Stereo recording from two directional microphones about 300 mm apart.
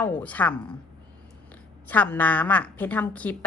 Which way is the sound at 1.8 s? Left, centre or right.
Centre.